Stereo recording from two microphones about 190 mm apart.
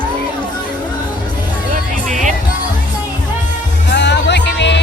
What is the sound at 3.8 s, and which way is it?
Music, 65° left (ahead or behind).